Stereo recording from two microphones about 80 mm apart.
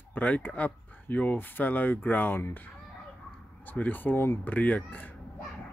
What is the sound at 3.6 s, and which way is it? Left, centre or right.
Speech, left.